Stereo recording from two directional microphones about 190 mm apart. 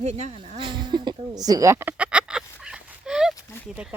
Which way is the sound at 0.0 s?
35° right (ahead or behind).